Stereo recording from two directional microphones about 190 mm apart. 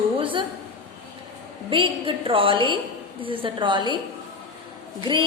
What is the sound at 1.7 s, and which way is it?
A woman's voice, 25° right (ahead or behind).